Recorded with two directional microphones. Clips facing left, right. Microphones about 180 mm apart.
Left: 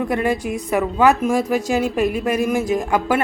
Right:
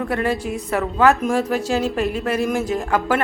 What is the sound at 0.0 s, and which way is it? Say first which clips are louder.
Speech: left 2 dB; 15° left (ahead or behind).